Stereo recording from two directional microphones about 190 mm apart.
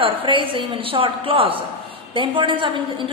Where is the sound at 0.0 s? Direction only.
25° right (ahead or behind).